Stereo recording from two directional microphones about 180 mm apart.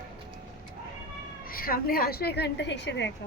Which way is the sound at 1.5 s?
55° left (ahead or behind).